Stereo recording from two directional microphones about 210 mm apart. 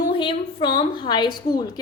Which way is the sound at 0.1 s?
20° left (ahead or behind).